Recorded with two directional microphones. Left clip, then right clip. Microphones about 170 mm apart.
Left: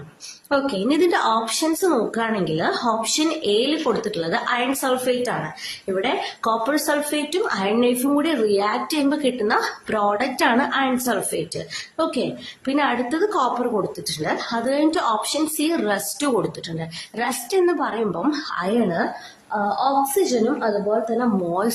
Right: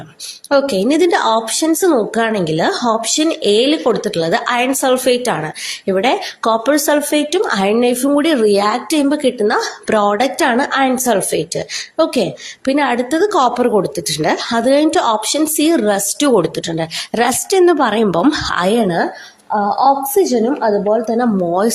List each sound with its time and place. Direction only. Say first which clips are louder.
0.5 s speech: right 7 dB; 35° right (ahead or behind)
12.6 s a woman's voice: right 6 dB; 40° right (ahead or behind)